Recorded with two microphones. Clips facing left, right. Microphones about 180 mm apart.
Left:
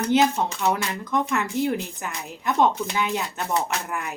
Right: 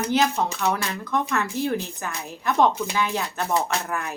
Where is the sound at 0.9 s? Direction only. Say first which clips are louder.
Left 1 dB; 20° left (ahead or behind).